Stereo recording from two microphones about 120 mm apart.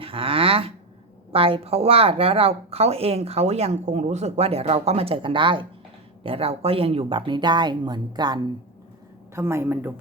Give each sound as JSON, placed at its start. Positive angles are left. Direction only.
{"t": 0.0, "sound": "a sound", "side_deg": -50}
{"t": 1.3, "sound": "speech", "side_deg": -50}
{"t": 9.3, "sound": "a woman's voice", "side_deg": -20}